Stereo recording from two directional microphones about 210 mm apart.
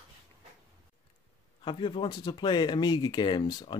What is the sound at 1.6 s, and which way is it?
Speech, 20° left (ahead or behind).